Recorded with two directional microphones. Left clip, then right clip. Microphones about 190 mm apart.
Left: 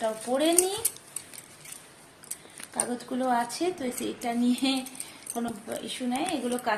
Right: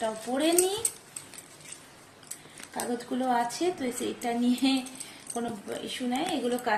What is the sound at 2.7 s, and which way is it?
A woman's voice, 25° left (ahead or behind).